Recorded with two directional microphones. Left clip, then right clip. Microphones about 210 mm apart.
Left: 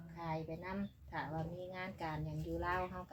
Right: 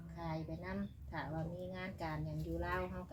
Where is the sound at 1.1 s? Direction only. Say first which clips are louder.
Left 1 dB; 20° left (ahead or behind).